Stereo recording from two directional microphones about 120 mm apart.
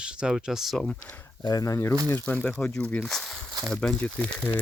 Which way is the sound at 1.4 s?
35° left (ahead or behind).